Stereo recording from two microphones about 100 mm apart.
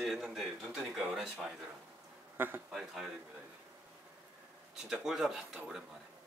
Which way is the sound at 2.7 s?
5° right (ahead or behind).